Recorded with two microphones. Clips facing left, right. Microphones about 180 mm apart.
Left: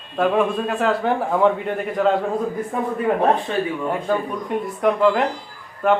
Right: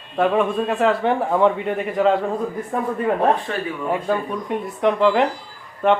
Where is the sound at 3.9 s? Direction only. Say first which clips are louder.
Even; centre (ahead or behind).